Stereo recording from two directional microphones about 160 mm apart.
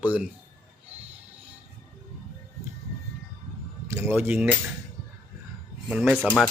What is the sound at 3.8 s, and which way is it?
Speech, 15° right (ahead or behind).